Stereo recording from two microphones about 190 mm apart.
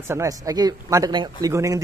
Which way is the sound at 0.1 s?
15° right (ahead or behind).